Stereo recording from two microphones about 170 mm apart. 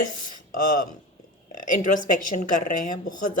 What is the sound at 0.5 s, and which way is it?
Speech, 55° left (ahead or behind).